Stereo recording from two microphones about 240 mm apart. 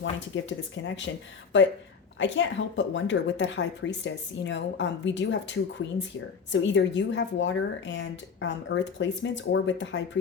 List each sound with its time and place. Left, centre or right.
0.0 s a woman's voice: left